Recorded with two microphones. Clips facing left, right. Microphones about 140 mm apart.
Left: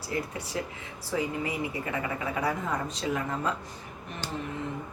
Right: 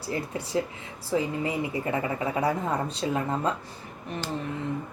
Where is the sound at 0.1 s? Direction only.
30° right (ahead or behind).